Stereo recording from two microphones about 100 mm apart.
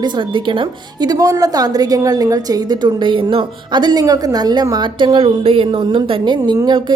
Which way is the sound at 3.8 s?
40° right (ahead or behind).